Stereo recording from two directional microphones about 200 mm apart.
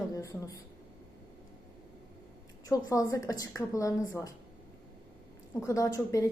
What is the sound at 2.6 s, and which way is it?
A woman's voice, 15° left (ahead or behind).